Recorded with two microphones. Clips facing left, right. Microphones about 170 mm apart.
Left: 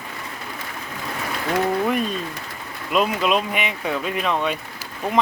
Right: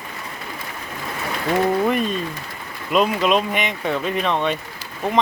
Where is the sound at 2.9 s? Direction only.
Centre (ahead or behind).